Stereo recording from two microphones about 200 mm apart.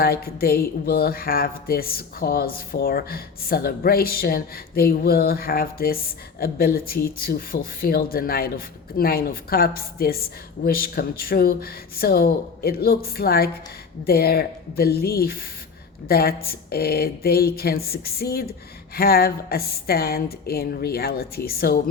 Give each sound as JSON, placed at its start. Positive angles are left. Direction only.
{"t": 0.0, "sound": "speech", "side_deg": 50}